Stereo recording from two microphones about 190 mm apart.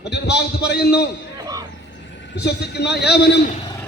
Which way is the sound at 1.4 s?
20° right (ahead or behind).